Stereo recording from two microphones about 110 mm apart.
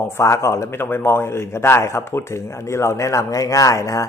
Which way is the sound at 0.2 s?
25° left (ahead or behind).